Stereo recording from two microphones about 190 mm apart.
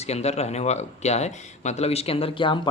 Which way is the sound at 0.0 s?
35° left (ahead or behind).